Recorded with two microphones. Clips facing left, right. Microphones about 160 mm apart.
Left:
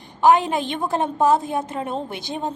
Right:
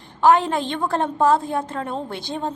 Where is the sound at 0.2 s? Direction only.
15° left (ahead or behind).